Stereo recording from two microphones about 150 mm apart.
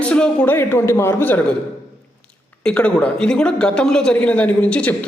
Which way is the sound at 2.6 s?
10° left (ahead or behind).